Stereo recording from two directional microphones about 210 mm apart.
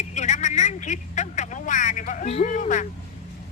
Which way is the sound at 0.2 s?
35° left (ahead or behind).